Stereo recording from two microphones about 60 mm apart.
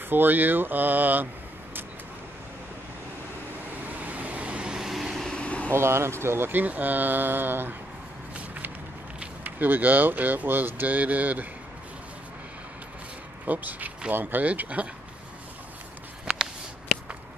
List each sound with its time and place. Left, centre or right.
0.1 s speech: right
3.9 s vehicle: right; by 5.1 s centre
5.3 s vehicle: left
5.7 s speech: right
6.5 s speech: right
9.4 s speech: right
13.5 s speech: right
16.3 s a sound: centre